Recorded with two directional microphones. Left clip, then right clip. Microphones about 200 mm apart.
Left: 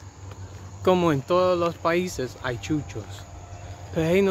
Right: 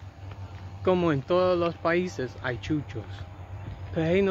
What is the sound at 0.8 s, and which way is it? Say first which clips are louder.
Speech: left 4 dB; 20° left (ahead or behind).